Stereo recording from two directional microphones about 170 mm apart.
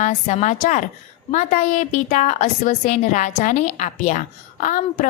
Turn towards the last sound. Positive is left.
turn(degrees=50)  # may be behind; listen again after turning